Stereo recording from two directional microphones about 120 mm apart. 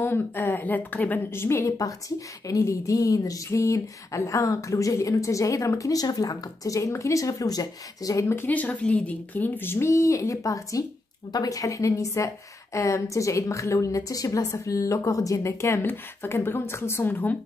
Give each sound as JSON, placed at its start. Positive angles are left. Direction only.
{"t": 0.0, "sound": "a woman's voice", "side_deg": 20}